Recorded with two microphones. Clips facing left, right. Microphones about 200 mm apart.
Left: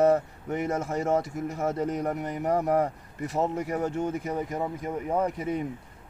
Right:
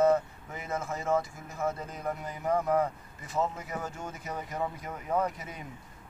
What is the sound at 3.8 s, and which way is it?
Speech, 60° left (ahead or behind).